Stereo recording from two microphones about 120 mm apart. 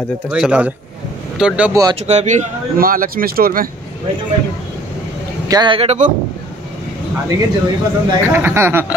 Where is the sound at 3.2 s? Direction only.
90° right.